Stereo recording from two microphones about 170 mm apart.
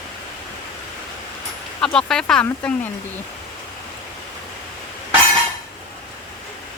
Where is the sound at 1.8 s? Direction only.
5° left (ahead or behind).